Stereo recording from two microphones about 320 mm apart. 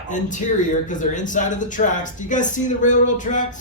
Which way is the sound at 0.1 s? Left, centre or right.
Left.